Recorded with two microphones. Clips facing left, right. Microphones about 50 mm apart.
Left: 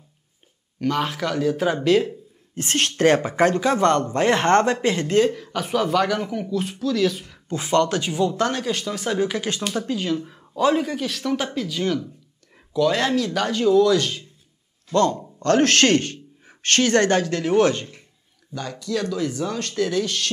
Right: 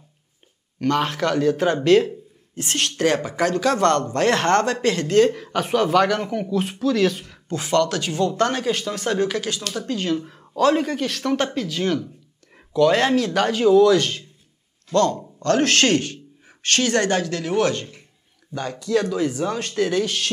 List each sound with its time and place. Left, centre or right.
0.7 s speech: centre
2.5 s speech: left
3.6 s speech: centre
5.6 s speech: centre
7.4 s speech: left
8.4 s speech: centre
9.4 s speech: left
9.9 s speech: centre
10.5 s speech: centre
10.8 s speech: centre
14.9 s speech: left
15.4 s speech: left
18.5 s speech: right